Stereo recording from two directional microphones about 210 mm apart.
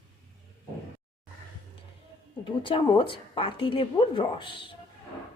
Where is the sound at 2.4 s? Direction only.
25° left (ahead or behind).